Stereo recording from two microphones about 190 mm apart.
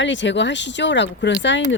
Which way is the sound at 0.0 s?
70° left (ahead or behind).